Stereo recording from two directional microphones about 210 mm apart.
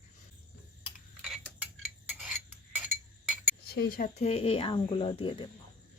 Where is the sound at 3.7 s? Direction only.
45° left (ahead or behind); by 5.5 s 25° left (ahead or behind).